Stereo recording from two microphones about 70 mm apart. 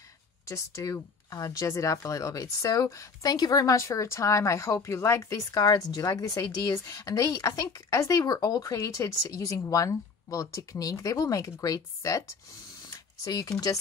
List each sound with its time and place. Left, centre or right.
0.5 s speech: left
3.3 s speech: left
5.5 s a woman's voice: left